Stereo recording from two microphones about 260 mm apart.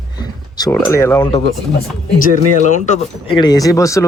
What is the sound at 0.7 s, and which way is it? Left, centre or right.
Speech, centre.